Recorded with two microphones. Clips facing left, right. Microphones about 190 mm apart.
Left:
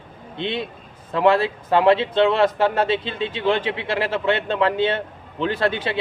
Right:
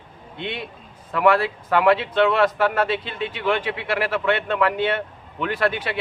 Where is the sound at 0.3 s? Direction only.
25° left (ahead or behind).